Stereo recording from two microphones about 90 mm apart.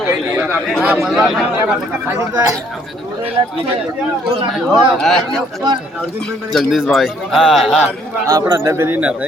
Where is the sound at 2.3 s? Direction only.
30° right (ahead or behind).